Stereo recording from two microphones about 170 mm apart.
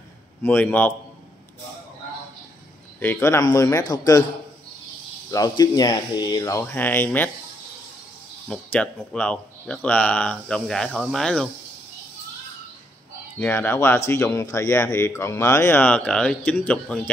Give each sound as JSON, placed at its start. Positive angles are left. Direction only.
{"t": 0.4, "sound": "speech", "side_deg": 10}
{"t": 3.0, "sound": "speech", "side_deg": 15}
{"t": 5.3, "sound": "speech", "side_deg": 20}
{"t": 8.5, "sound": "speech", "side_deg": 5}
{"t": 13.4, "sound": "speech", "side_deg": 10}